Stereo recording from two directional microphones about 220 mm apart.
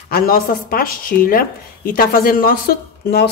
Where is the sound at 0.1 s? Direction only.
40° left (ahead or behind).